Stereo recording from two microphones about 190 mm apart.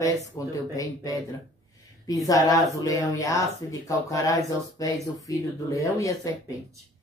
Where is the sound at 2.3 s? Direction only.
20° left (ahead or behind).